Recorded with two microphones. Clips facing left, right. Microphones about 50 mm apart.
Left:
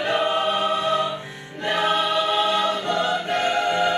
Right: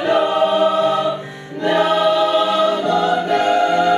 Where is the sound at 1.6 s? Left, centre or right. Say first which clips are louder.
Right 7 dB; centre.